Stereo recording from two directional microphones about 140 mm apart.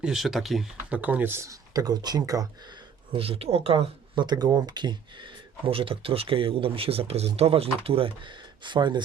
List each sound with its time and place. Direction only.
0.0 s speech: 5° right (ahead or behind); by 2.5 s 25° right (ahead or behind)
3.1 s speech: 40° right (ahead or behind)
3.8 s speech: 30° right (ahead or behind)